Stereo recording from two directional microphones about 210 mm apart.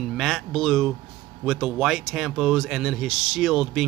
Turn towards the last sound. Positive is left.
turn(degrees=0)  # may be behind; listen again after turning